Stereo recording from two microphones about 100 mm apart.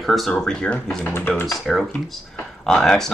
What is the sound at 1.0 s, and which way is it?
Speech, 20° left (ahead or behind).